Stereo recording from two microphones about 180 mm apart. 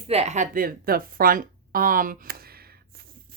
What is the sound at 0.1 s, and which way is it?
Speech, 35° right (ahead or behind).